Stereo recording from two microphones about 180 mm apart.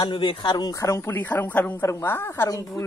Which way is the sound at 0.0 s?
25° left (ahead or behind).